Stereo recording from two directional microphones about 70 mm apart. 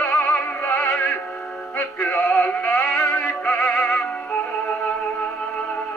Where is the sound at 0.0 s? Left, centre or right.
Centre.